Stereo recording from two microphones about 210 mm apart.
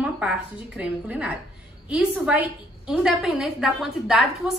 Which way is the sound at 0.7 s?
5° right (ahead or behind).